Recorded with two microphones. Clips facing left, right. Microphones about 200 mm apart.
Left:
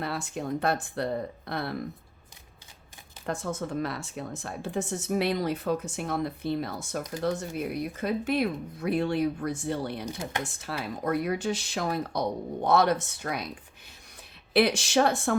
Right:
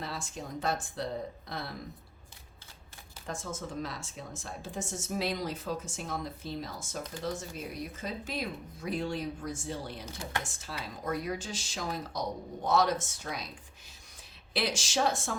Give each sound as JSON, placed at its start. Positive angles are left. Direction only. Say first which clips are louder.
{"t": 0.0, "sound": "speech", "louder": "left 7 dB", "side_deg": 60}
{"t": 3.2, "sound": "speech", "louder": "left 7 dB", "side_deg": 60}
{"t": 14.5, "sound": "speech", "louder": "left 9 dB", "side_deg": 60}